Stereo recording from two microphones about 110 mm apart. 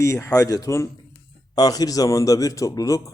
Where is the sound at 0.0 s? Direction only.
30° left (ahead or behind).